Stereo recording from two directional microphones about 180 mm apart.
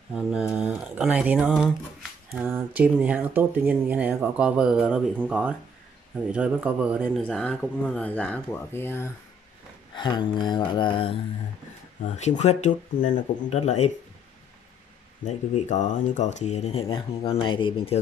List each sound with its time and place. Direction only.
0.1 s speech: 5° right (ahead or behind)
7.2 s speech: 5° left (ahead or behind)
9.9 s a sound: 25° left (ahead or behind)
12.2 s speech: 40° left (ahead or behind)
15.2 s speech: 40° left (ahead or behind)